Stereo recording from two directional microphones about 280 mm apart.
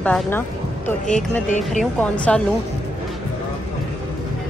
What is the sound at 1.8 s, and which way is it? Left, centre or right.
Speech, centre.